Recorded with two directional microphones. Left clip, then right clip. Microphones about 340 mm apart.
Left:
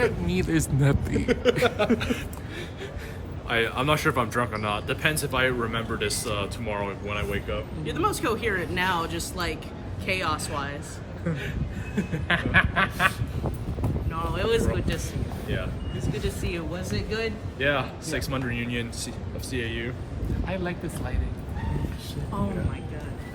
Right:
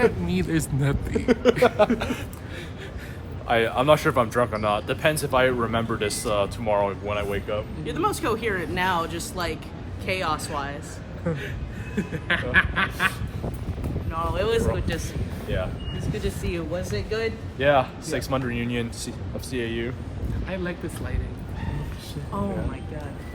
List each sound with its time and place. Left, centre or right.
0.0 s snicker: centre
1.3 s speech: centre
3.4 s speech: centre
10.1 s snicker: centre
11.3 s speech: centre
11.9 s snicker: centre
14.1 s snicker: centre
15.4 s speech: centre
20.5 s snicker: centre
22.3 s snicker: centre